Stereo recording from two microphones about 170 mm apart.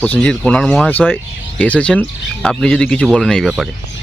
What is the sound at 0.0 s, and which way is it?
Speech, 10° left (ahead or behind).